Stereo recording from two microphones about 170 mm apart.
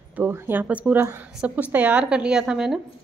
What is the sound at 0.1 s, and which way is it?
A woman's voice, 15° right (ahead or behind).